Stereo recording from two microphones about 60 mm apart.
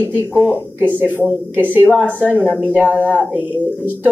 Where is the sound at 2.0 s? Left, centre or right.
Left.